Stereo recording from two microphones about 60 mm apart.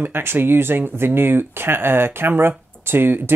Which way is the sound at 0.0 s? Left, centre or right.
Right.